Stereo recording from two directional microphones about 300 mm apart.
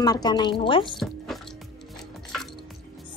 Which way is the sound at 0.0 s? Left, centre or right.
Centre.